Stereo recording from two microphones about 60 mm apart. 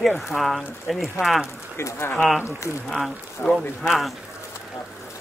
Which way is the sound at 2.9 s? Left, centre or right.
Centre.